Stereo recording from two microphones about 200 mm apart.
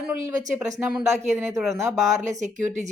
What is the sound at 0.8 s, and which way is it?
Speech, 5° right (ahead or behind).